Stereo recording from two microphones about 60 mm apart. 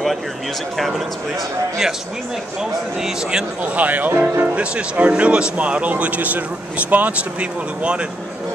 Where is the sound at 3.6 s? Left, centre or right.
Right.